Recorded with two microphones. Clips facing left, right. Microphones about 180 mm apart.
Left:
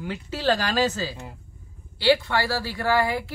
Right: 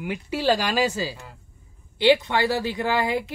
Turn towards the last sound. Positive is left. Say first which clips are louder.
# left 1 dB
turn(degrees=-20)  # may be behind; listen again after turning